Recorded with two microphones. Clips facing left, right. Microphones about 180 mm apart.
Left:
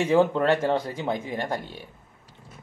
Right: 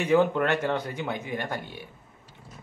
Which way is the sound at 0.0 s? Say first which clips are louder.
Left 2 dB; 25° left (ahead or behind).